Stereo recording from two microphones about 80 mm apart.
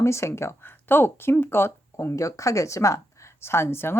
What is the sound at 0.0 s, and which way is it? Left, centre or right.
Speech, left.